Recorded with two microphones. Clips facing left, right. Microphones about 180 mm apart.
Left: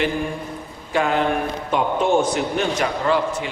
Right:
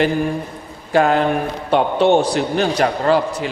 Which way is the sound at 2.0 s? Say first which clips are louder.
Right 4 dB; 35° right (ahead or behind).